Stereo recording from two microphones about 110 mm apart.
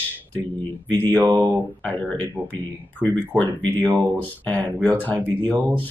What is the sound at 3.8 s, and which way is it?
Speech, 30° right (ahead or behind).